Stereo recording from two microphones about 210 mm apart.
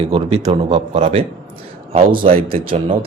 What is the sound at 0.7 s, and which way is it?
Speech, 30° right (ahead or behind).